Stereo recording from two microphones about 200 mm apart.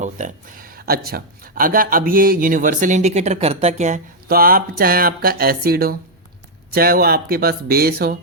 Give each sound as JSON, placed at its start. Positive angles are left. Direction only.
{"t": 0.0, "sound": "speech", "side_deg": -40}